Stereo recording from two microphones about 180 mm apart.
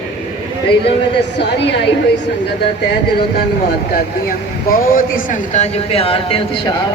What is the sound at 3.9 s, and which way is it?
A woman's voice, 50° left (ahead or behind).